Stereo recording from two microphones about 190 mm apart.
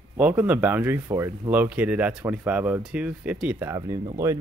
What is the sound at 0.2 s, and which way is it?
Speech, 10° right (ahead or behind).